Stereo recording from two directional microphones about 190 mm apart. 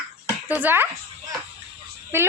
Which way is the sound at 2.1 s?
10° right (ahead or behind).